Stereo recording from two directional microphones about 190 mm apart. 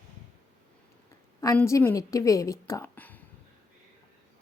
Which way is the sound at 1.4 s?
15° left (ahead or behind).